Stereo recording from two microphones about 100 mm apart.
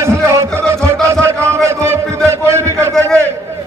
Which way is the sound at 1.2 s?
25° right (ahead or behind).